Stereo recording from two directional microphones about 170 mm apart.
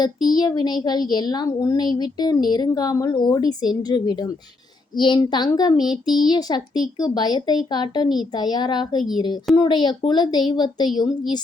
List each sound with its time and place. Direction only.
0.3 s a woman's voice: 25° left (ahead or behind)